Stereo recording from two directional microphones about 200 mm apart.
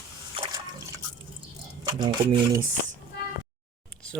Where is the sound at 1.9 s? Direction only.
20° right (ahead or behind).